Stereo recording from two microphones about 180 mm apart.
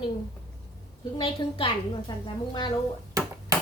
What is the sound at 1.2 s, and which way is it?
A woman's voice, 30° left (ahead or behind).